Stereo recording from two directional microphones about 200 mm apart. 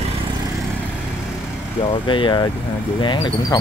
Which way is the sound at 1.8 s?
25° left (ahead or behind).